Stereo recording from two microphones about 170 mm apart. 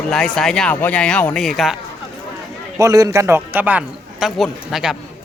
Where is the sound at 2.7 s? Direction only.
20° right (ahead or behind).